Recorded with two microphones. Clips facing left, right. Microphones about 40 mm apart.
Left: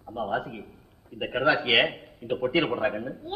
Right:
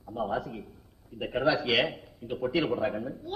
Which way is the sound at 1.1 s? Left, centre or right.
Left.